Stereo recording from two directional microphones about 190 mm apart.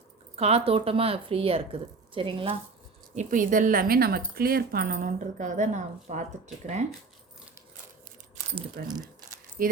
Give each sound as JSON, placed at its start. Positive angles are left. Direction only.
{"t": 0.3, "sound": "a woman's voice", "side_deg": -35}
{"t": 3.2, "sound": "a woman's voice", "side_deg": -45}
{"t": 8.8, "sound": "a woman's voice", "side_deg": -50}